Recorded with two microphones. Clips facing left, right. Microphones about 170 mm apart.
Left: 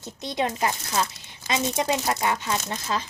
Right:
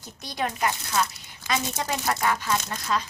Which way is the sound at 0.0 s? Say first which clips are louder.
Left 3 dB; 20° left (ahead or behind).